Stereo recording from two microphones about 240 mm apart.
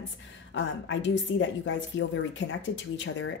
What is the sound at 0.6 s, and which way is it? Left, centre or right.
Speech, left.